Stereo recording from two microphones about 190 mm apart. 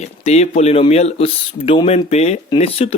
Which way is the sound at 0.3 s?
35° left (ahead or behind).